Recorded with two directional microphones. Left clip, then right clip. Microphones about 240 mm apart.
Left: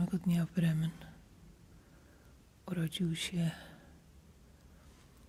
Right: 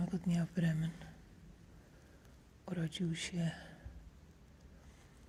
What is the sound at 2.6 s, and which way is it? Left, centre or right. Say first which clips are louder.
Speech: left 3 dB; left.